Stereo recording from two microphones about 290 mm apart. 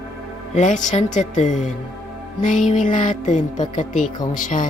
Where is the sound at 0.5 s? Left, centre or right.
Left.